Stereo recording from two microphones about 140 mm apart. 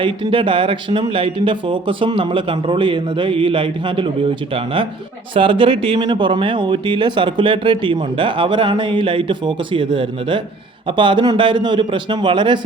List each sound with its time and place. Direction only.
0.0 s speech: 35° right (ahead or behind)